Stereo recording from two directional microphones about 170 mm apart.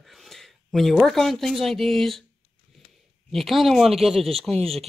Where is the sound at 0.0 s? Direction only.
Centre (ahead or behind).